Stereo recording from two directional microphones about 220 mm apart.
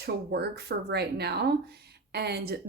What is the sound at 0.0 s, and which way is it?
Speech, 50° right (ahead or behind).